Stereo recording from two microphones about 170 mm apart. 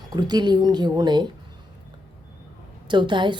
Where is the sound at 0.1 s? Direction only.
25° right (ahead or behind).